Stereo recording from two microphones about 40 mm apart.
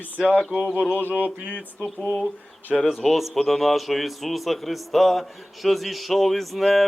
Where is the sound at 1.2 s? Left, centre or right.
Left.